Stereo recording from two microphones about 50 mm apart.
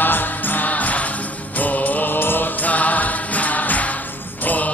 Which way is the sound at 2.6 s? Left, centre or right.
Left.